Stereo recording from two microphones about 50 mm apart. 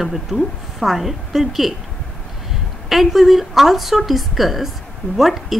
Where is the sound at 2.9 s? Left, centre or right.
Centre.